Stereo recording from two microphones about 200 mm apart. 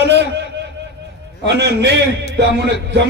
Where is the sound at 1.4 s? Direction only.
60° right (ahead or behind).